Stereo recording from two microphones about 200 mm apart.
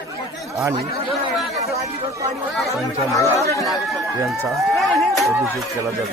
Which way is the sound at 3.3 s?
15° left (ahead or behind).